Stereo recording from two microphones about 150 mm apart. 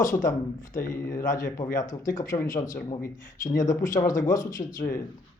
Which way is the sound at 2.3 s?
20° left (ahead or behind).